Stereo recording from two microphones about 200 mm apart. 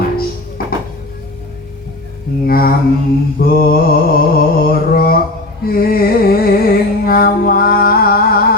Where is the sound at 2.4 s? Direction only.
45° left (ahead or behind).